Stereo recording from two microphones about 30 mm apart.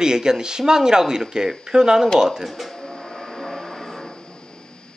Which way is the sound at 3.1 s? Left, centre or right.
Centre.